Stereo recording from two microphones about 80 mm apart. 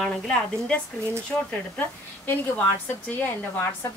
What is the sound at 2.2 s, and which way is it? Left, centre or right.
A woman's voice, left.